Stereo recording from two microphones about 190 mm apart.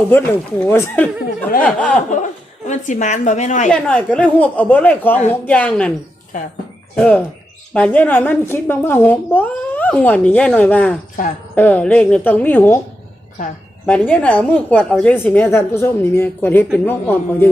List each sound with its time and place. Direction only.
0.1 s a woman's voice: 10° left (ahead or behind)
2.0 s a woman's voice: 40° left (ahead or behind)
3.7 s a woman's voice: 5° left (ahead or behind)
6.9 s a woman's voice: 5° left (ahead or behind)
13.8 s a woman's voice: 5° left (ahead or behind)